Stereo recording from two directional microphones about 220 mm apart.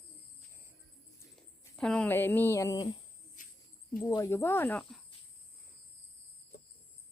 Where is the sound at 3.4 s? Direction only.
35° left (ahead or behind).